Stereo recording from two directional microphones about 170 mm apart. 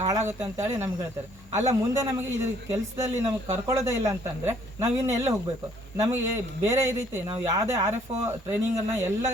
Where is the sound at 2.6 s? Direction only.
15° right (ahead or behind).